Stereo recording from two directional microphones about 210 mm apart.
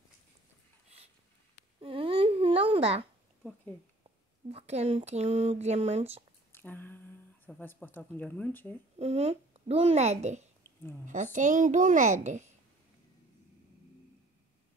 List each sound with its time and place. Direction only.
1.8 s babbling: 25° right (ahead or behind)
4.5 s speech: 30° right (ahead or behind)
6.5 s speech: 10° left (ahead or behind)
8.9 s speech: 30° right (ahead or behind)
10.6 s a sound: 10° left (ahead or behind)
11.3 s a child's voice: 35° right (ahead or behind)